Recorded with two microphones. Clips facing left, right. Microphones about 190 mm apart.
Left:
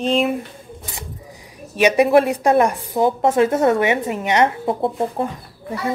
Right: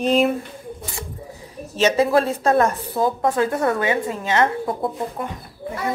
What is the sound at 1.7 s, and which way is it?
A woman's voice, 15° left (ahead or behind).